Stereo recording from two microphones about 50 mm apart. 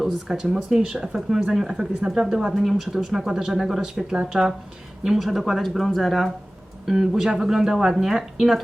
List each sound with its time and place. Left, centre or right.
0.0 s speech: centre
2.6 s speech: centre
4.1 s speech: centre
5.0 s speech: centre
6.8 s speech: centre